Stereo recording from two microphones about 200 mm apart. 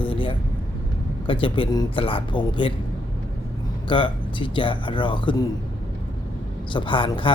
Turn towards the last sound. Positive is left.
turn(degrees=25)  # may be behind; listen again after turning